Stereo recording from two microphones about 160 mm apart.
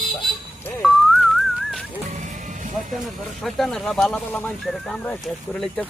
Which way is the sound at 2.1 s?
50° right (ahead or behind).